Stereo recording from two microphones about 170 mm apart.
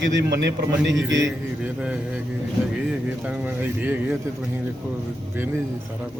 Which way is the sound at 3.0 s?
10° right (ahead or behind).